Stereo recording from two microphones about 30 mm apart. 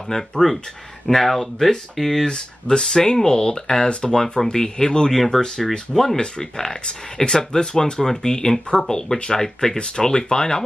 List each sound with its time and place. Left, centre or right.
0.1 s speech: left
1.0 s speech: centre
2.2 s speech: left
5.3 s speech: centre
6.1 s speech: left